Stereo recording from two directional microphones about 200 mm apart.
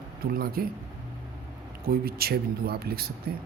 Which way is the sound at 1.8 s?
50° right (ahead or behind).